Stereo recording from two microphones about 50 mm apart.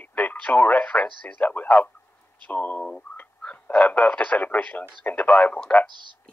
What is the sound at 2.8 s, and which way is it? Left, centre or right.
Speech, centre.